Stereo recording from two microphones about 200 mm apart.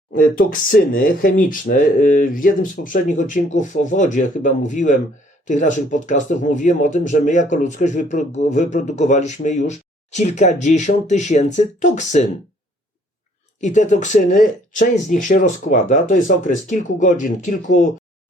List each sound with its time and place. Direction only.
0.1 s speech: 45° left (ahead or behind)
13.6 s speech: 40° left (ahead or behind)